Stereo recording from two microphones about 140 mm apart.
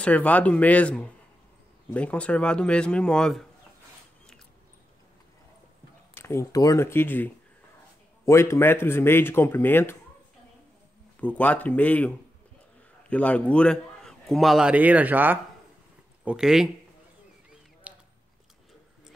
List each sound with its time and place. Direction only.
0.0 s speech: 10° left (ahead or behind)
6.1 s speech: 20° left (ahead or behind)
11.1 s speech: 10° left (ahead or behind)
13.1 s a man's voice: 10° left (ahead or behind)
17.9 s biting: 10° right (ahead or behind)